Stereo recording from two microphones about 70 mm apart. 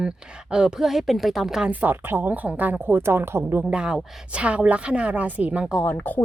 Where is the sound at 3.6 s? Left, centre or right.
Centre.